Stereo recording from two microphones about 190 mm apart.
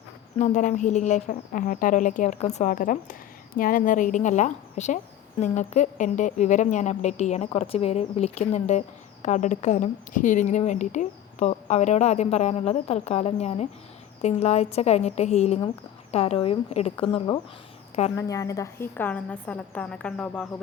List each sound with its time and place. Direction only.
0.3 s speech: 40° left (ahead or behind); by 20.5 s 5° left (ahead or behind)